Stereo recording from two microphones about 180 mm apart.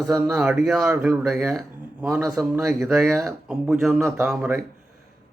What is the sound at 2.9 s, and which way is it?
Speech, 15° right (ahead or behind).